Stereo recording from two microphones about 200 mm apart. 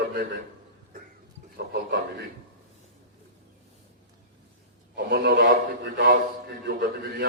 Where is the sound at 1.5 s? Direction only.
60° right (ahead or behind).